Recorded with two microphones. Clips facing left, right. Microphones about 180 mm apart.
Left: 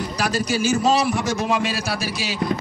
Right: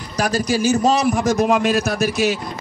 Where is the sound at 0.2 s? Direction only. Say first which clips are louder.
Right 4 dB; 40° right (ahead or behind).